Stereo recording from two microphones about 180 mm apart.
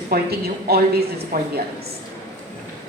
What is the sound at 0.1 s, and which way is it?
A woman's voice, 60° right (ahead or behind).